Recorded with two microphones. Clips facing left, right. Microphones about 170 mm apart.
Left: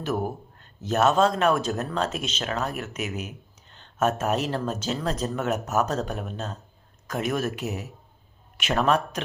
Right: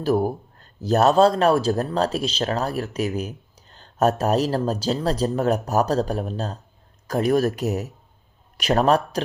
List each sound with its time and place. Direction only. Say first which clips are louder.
0.0 s a man's voice: right 7 dB; 35° right (ahead or behind)